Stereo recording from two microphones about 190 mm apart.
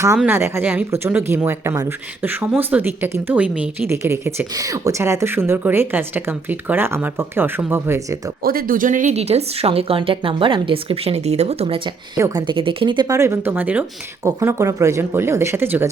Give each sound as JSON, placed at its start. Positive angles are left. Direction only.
{"t": 0.2, "sound": "speech", "side_deg": -10}
{"t": 8.4, "sound": "speech", "side_deg": -50}
{"t": 12.1, "sound": "speech", "side_deg": -20}